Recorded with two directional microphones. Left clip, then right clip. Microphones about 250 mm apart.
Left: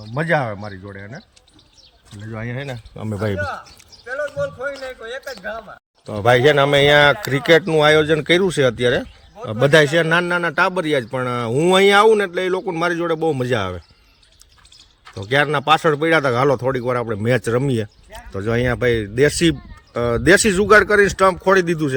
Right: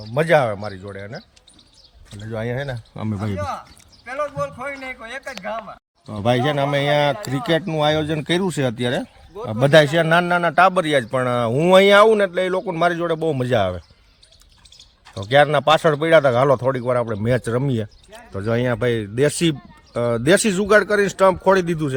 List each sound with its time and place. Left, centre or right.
0.1 s speech: centre
2.2 s speech: centre
2.6 s speech: right
6.1 s a man's voice: centre
15.1 s a man's voice: centre